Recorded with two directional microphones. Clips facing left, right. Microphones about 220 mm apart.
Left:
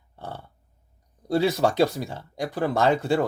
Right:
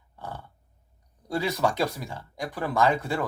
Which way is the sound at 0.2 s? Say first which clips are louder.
Left 2 dB; 30° left (ahead or behind).